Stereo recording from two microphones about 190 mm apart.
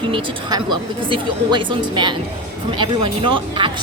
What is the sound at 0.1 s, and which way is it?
Speech, 25° right (ahead or behind).